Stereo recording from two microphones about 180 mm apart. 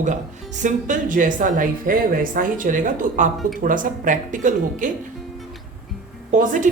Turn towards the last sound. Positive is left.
turn(degrees=-45)  # may be behind; listen again after turning